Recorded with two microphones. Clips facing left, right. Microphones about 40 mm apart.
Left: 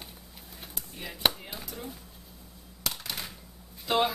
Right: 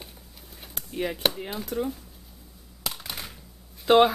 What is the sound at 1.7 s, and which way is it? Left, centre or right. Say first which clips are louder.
Speech: right 15 dB; right.